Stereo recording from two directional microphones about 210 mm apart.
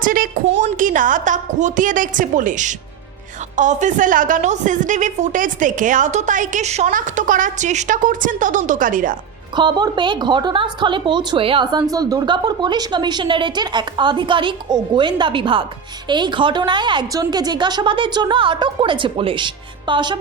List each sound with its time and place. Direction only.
0.0 s a sound: 40° right (ahead or behind)
0.6 s a woman's voice: 40° right (ahead or behind)
9.6 s a woman's voice: 20° right (ahead or behind)